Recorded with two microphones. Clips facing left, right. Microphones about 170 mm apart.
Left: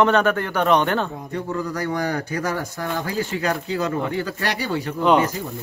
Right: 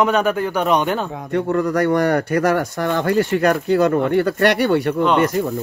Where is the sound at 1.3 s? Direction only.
70° right (ahead or behind).